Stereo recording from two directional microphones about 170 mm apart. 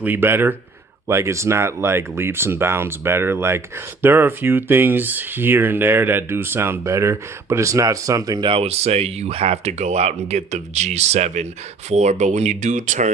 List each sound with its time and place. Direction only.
0.0 s speech: 10° right (ahead or behind); by 13.1 s 45° right (ahead or behind)